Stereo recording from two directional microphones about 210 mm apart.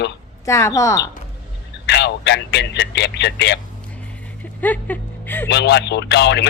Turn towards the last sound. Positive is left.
turn(degrees=55)  # may be behind; listen again after turning